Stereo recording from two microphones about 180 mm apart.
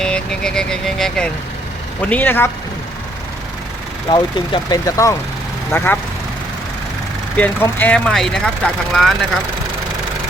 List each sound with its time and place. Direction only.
0.0 s a man's voice: 5° left (ahead or behind)
4.1 s a man's voice: 25° left (ahead or behind)
7.3 s speech: 10° left (ahead or behind)